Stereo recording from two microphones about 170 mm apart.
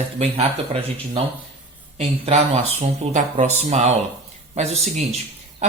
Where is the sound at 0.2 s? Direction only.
35° right (ahead or behind).